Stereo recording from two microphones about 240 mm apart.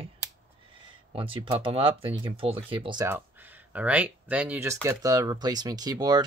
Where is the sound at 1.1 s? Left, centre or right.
Right.